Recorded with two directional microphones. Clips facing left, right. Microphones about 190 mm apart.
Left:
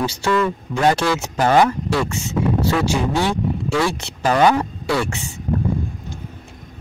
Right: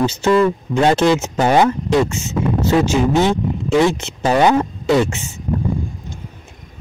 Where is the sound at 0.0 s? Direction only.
20° right (ahead or behind).